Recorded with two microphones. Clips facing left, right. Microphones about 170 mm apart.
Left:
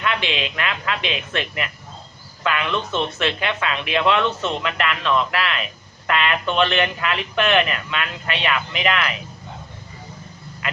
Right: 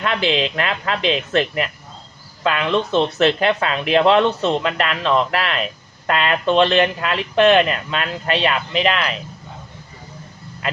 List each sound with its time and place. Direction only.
0.0 s speech: 40° right (ahead or behind)